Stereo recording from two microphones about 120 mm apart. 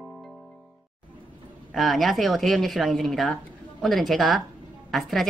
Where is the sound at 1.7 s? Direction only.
Centre (ahead or behind).